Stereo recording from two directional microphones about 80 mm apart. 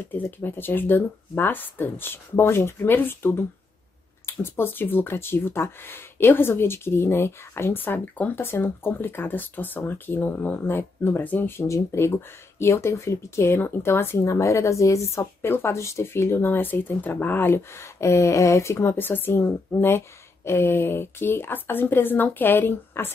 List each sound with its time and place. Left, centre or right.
0.1 s speech: left